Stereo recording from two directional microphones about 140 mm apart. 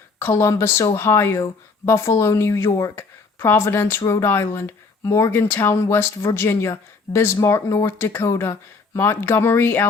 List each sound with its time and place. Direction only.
0.2 s a woman's voice: 15° left (ahead or behind)